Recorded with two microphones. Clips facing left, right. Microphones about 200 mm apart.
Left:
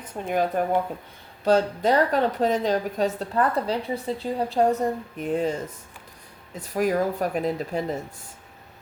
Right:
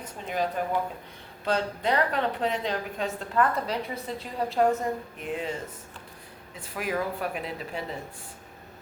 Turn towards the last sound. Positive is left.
turn(degrees=40)  # may be behind; listen again after turning